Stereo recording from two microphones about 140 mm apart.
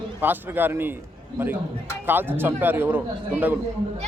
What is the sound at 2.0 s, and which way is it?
Speech, 15° right (ahead or behind).